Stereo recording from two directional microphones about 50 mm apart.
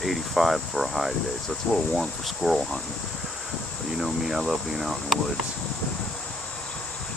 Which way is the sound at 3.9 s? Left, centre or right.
Centre.